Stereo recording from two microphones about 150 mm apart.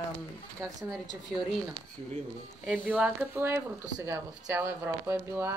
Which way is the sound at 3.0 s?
10° right (ahead or behind).